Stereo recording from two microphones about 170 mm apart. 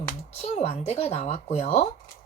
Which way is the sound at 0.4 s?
40° left (ahead or behind).